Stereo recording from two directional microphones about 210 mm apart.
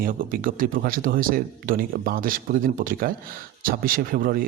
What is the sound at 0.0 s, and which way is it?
A man's voice, 40° right (ahead or behind).